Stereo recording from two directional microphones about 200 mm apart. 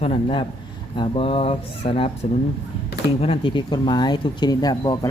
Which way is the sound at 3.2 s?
25° left (ahead or behind).